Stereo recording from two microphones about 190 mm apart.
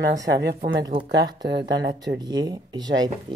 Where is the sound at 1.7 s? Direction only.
55° right (ahead or behind).